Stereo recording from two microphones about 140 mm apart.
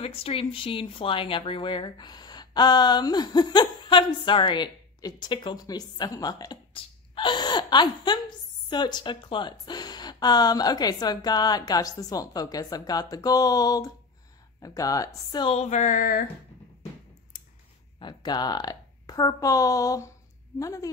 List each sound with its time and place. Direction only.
0.0 s speech: 40° left (ahead or behind)
15.5 s a sound: 55° left (ahead or behind); by 16.3 s 80° left
17.9 s a woman's voice: 30° left (ahead or behind)